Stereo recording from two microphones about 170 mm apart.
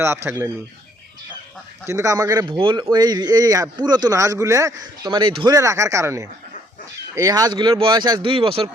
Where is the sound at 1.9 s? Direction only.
20° right (ahead or behind).